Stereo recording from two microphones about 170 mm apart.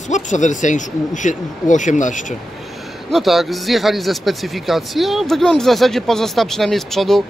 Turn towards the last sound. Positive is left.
turn(degrees=0)  # may be behind; listen again after turning